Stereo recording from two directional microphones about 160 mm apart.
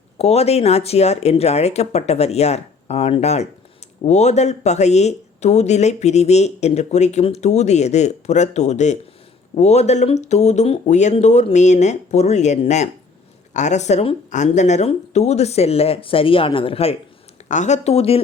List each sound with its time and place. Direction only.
0.2 s speech: 40° left (ahead or behind)
17.5 s speech: 50° left (ahead or behind)